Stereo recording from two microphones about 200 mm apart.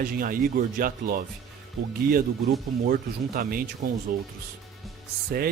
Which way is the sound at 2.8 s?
45° right (ahead or behind).